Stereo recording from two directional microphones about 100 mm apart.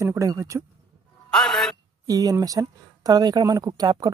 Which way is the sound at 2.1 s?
40° right (ahead or behind).